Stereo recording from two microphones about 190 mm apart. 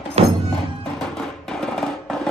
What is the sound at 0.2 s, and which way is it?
Music, 35° right (ahead or behind).